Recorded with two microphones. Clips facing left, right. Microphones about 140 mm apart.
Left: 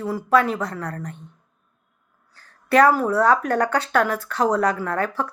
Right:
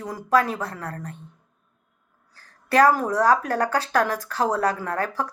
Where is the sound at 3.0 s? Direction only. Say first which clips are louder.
Left 2 dB; 35° right (ahead or behind).